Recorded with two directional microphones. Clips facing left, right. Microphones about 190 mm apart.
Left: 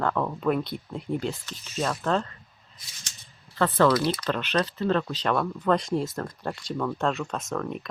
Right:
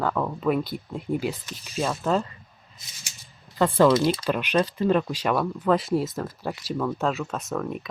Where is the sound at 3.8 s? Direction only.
25° right (ahead or behind).